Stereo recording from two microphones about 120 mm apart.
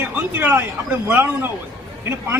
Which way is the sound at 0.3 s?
15° right (ahead or behind).